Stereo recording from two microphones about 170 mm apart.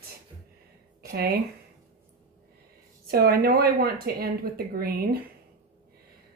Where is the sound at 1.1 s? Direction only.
70° right (ahead or behind).